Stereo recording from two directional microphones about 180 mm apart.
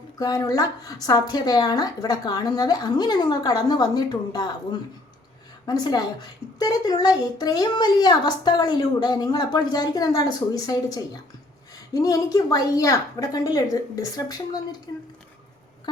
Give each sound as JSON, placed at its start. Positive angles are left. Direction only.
{"t": 0.2, "sound": "a woman's voice", "side_deg": 20}